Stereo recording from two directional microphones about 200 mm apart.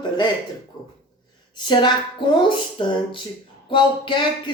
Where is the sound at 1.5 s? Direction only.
25° left (ahead or behind).